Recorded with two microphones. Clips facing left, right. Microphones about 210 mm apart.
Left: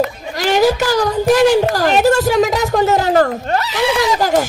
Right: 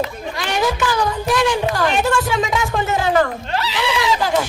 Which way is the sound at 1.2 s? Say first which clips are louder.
Left 10 dB; 40° left (ahead or behind).